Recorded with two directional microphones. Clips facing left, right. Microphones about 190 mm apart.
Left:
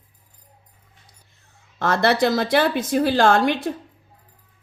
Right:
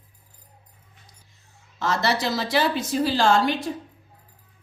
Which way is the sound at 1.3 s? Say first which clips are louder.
Left 3 dB; 55° left (ahead or behind).